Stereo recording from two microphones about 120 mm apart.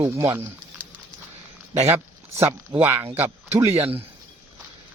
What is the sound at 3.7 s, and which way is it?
Speech, 55° right (ahead or behind).